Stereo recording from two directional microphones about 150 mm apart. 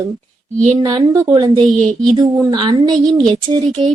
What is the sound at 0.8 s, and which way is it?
Speech, 25° right (ahead or behind).